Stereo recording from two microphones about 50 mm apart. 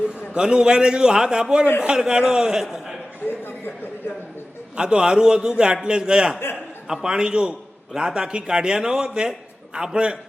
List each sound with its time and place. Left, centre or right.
0.1 s a man's voice: centre
4.8 s a man's voice: centre